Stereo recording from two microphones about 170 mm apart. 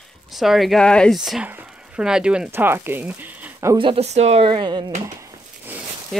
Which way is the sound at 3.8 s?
35° right (ahead or behind).